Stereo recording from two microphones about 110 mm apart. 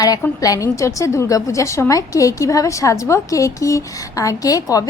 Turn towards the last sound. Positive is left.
turn(degrees=35)  # may be behind; listen again after turning